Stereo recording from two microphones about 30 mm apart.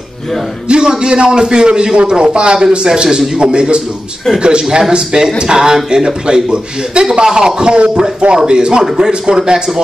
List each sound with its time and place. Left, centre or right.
0.7 s a man's voice: right
4.6 s a man's voice: right